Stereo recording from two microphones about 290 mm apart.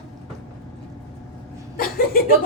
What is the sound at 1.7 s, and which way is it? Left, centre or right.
Chuckle, left.